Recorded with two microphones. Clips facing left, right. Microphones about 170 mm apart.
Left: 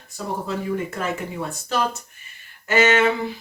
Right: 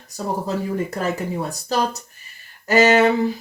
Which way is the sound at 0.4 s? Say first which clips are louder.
Right 2 dB; 40° right (ahead or behind).